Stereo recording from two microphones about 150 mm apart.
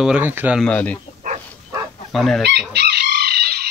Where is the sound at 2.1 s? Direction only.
Centre (ahead or behind).